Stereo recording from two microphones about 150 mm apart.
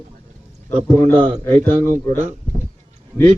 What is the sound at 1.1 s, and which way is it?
Speech, 35° right (ahead or behind).